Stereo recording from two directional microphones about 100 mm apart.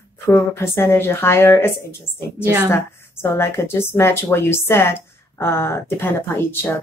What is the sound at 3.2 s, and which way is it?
A woman's voice, 25° left (ahead or behind).